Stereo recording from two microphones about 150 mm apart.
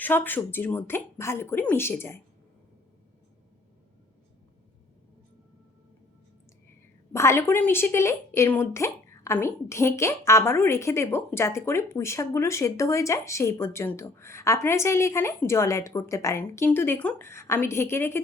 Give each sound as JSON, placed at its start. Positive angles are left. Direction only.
{"t": 0.0, "sound": "a woman's voice", "side_deg": 10}
{"t": 7.1, "sound": "a woman's voice", "side_deg": 15}